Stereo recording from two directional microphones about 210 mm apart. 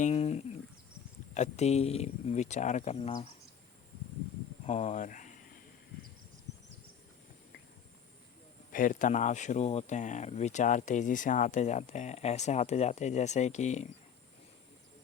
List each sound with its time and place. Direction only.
0.0 s a sound: 30° left (ahead or behind)
1.3 s speech: 30° left (ahead or behind)
4.6 s speech: 30° left (ahead or behind)
8.7 s speech: 40° left (ahead or behind)